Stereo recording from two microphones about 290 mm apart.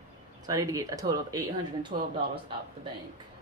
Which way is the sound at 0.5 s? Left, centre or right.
Centre.